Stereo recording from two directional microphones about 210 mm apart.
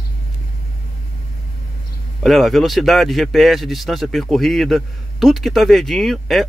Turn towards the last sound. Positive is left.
turn(degrees=0)  # may be behind; listen again after turning